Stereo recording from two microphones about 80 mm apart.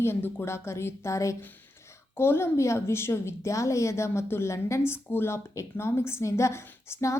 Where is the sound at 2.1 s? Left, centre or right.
Left.